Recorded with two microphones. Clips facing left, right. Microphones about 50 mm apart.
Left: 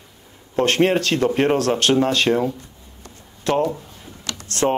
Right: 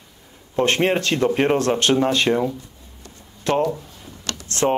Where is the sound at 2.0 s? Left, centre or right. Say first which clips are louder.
Even; centre.